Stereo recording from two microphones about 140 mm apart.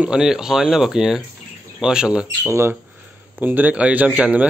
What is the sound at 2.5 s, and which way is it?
Speech, 20° right (ahead or behind).